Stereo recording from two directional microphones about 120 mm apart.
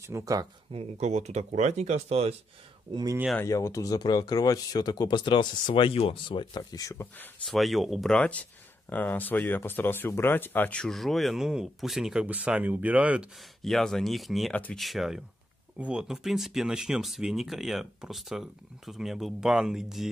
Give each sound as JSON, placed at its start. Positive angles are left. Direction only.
{"t": 0.0, "sound": "speech", "side_deg": -25}
{"t": 0.7, "sound": "speech", "side_deg": -65}
{"t": 2.9, "sound": "speech", "side_deg": -35}
{"t": 3.4, "sound": "speech", "side_deg": 25}
{"t": 7.4, "sound": "speech", "side_deg": 0}
{"t": 13.6, "sound": "speech", "side_deg": 0}
{"t": 14.5, "sound": "speech", "side_deg": 10}
{"t": 14.8, "sound": "speech", "side_deg": 0}